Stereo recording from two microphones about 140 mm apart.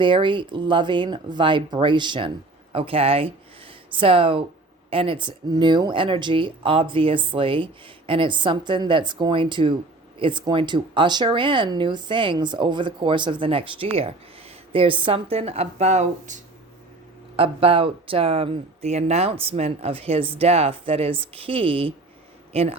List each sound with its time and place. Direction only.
0.0 s speech: 35° right (ahead or behind); by 16.4 s 60° right (ahead or behind)
17.3 s speech: 45° right (ahead or behind)